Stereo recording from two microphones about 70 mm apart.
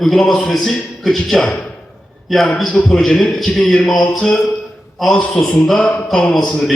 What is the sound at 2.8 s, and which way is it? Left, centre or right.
Speech, centre.